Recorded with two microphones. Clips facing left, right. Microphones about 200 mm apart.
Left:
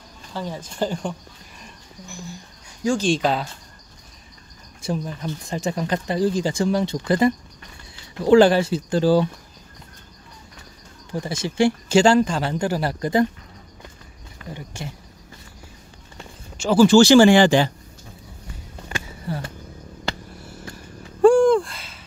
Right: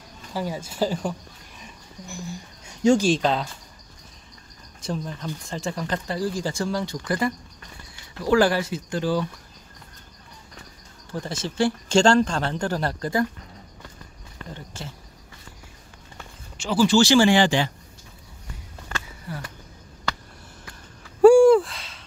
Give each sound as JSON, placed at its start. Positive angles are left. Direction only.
{"t": 0.3, "sound": "speech", "side_deg": -10}
{"t": 3.2, "sound": "speech", "side_deg": 5}
{"t": 4.8, "sound": "speech", "side_deg": 10}
{"t": 11.1, "sound": "speech", "side_deg": 10}
{"t": 14.5, "sound": "speech", "side_deg": 15}
{"t": 16.5, "sound": "speech", "side_deg": 45}
{"t": 18.9, "sound": "a sound", "side_deg": 15}
{"t": 19.2, "sound": "a sound", "side_deg": 30}
{"t": 21.2, "sound": "a sound", "side_deg": -10}